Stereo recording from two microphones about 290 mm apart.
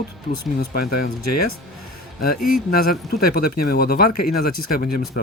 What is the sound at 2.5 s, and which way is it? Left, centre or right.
Speech, left.